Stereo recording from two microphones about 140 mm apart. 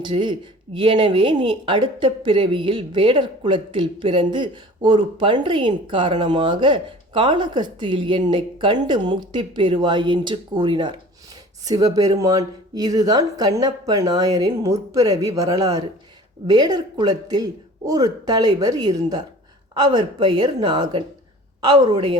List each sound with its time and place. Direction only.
0.0 s speech: 35° right (ahead or behind)